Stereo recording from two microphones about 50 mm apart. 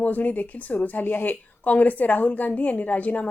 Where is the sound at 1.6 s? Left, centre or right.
Left.